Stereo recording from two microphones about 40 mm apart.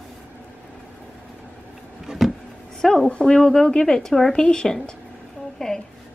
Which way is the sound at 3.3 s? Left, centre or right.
Centre.